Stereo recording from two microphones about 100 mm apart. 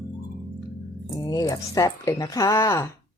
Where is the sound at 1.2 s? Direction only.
40° left (ahead or behind).